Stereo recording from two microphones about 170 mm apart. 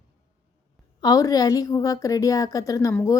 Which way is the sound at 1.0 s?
20° left (ahead or behind).